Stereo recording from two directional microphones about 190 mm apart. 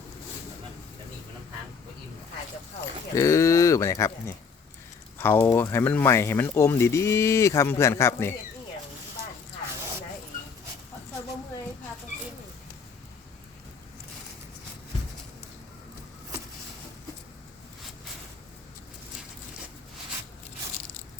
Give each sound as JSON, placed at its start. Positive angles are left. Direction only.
{"t": 3.2, "sound": "speech", "side_deg": 15}